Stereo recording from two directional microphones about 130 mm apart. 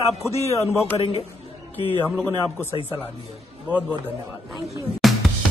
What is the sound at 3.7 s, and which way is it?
Speech, 10° right (ahead or behind).